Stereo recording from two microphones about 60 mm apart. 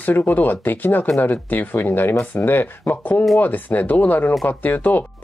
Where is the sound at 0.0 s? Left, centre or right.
Left.